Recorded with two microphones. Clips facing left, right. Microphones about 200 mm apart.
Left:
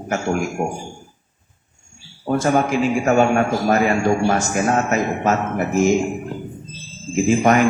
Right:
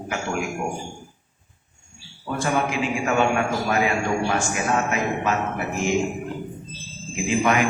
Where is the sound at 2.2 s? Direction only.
40° left (ahead or behind).